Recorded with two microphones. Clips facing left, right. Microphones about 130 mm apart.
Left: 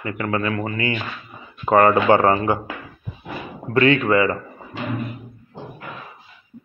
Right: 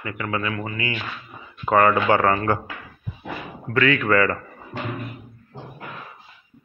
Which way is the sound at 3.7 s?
25° left (ahead or behind).